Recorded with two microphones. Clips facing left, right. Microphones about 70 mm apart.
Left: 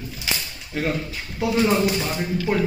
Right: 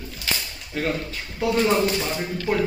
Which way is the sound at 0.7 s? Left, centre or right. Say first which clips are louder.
Left 1 dB; centre.